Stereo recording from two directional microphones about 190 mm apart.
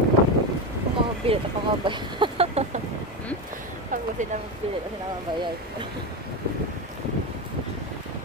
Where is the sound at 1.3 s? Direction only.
30° right (ahead or behind).